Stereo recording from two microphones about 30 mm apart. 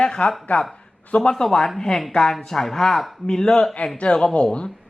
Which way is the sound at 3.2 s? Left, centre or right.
Left.